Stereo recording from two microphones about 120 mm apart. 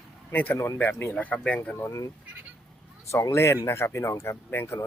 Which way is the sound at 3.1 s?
25° left (ahead or behind).